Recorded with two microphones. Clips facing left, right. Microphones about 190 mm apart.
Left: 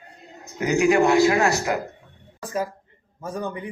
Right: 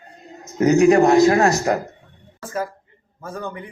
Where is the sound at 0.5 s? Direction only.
40° right (ahead or behind).